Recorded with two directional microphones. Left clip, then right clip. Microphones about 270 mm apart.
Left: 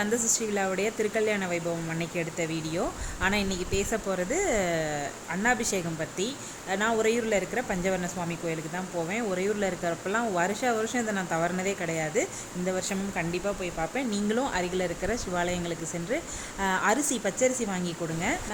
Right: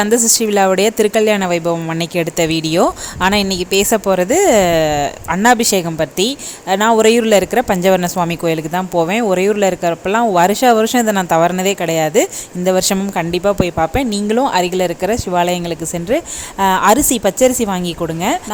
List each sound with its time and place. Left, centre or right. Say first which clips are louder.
0.3 s a woman's voice: right 16 dB; right